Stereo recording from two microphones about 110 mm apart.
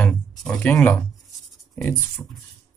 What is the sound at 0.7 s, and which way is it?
Speech, 15° left (ahead or behind).